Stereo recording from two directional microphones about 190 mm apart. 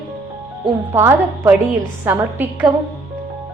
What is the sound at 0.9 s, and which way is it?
A woman's voice, 10° right (ahead or behind).